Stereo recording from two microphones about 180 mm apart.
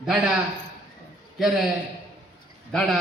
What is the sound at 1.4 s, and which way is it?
Speech, centre (ahead or behind).